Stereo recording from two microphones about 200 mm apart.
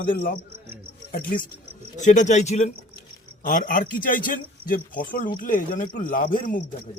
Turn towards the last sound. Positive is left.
turn(degrees=45)  # may be behind; listen again after turning